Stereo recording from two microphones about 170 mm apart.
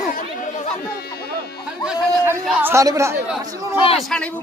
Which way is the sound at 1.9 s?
15° right (ahead or behind).